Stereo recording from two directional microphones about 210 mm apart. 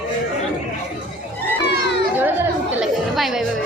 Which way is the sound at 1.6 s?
55° left (ahead or behind).